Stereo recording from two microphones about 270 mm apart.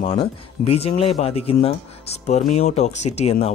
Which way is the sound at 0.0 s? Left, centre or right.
Centre.